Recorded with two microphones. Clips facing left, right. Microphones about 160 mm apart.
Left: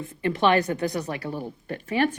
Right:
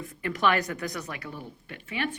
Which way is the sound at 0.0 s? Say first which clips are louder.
Left 4 dB; 25° left (ahead or behind).